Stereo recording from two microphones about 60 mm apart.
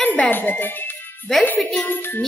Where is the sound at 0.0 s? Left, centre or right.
Left.